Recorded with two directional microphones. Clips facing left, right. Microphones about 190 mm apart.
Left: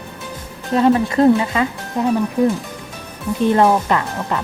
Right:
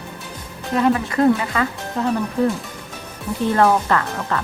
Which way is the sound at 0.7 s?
30° left (ahead or behind).